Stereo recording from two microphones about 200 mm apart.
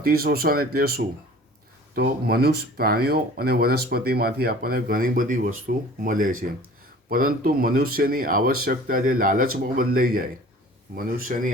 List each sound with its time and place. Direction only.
0.0 s speech: 50° right (ahead or behind)